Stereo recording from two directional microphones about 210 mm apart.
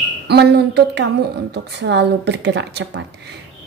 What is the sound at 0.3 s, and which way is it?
A woman's voice, 55° right (ahead or behind).